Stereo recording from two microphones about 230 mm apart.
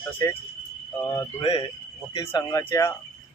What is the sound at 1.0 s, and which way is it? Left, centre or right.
Speech, centre.